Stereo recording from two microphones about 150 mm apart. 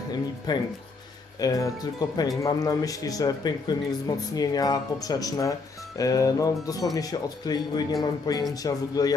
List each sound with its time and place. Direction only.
0.1 s speech: 30° left (ahead or behind)